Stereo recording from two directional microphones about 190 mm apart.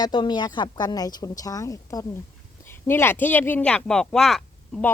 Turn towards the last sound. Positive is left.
turn(degrees=0)  # may be behind; listen again after turning